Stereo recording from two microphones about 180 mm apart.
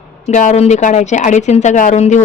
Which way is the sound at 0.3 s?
40° left (ahead or behind).